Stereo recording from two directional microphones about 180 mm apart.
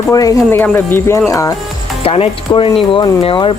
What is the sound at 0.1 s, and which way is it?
Speech, 20° left (ahead or behind).